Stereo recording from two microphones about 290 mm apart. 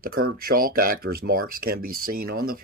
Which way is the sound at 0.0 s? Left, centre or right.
Right.